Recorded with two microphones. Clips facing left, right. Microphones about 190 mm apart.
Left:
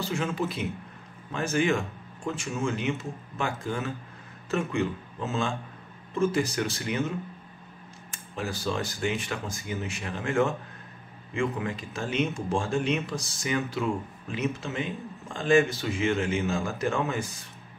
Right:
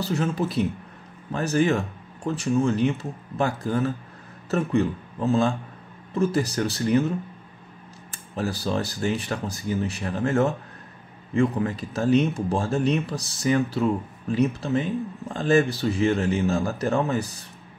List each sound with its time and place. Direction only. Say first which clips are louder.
0.0 s speech: right 4 dB; 40° right (ahead or behind)